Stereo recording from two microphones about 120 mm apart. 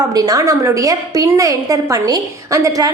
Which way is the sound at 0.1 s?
30° right (ahead or behind).